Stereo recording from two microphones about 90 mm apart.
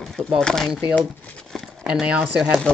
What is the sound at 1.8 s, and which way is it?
Speech, 10° right (ahead or behind).